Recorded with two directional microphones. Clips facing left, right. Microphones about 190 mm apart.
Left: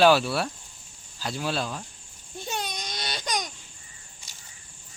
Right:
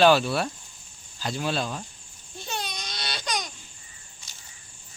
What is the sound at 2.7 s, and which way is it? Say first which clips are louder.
Baby cry: left 1 dB; 15° left (ahead or behind).